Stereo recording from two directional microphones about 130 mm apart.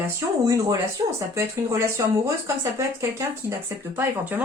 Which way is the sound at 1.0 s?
30° right (ahead or behind).